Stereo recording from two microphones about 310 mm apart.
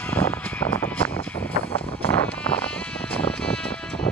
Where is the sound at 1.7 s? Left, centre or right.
Centre.